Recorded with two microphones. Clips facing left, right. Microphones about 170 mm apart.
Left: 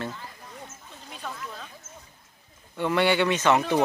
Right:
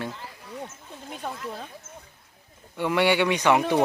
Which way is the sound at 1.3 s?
30° right (ahead or behind).